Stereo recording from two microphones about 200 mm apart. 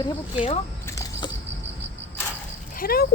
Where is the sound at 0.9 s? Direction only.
15° left (ahead or behind).